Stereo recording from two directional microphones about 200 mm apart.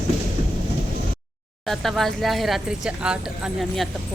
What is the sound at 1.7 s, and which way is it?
Speech, centre (ahead or behind).